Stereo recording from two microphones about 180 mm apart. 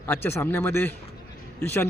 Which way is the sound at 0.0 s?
10° left (ahead or behind).